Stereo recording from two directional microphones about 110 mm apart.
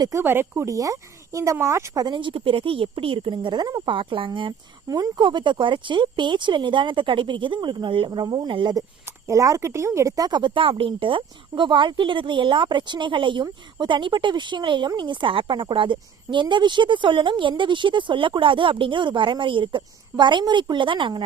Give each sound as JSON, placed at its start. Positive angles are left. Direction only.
{"t": 0.2, "sound": "speech", "side_deg": -20}
{"t": 2.0, "sound": "speech", "side_deg": -50}
{"t": 3.9, "sound": "speech", "side_deg": -50}
{"t": 4.9, "sound": "speech", "side_deg": -35}
{"t": 9.2, "sound": "speech", "side_deg": -30}